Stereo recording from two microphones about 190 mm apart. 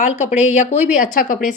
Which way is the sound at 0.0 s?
40° left (ahead or behind).